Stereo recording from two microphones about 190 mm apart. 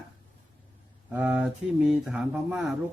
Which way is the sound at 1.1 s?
5° right (ahead or behind).